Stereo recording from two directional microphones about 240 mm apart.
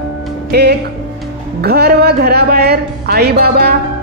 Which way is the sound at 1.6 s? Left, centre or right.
Right.